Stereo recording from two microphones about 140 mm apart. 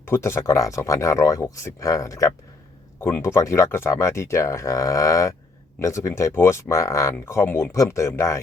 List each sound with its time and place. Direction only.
0.0 s speech: 20° left (ahead or behind)